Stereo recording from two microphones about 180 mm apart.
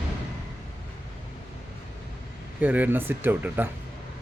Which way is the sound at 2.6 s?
10° right (ahead or behind).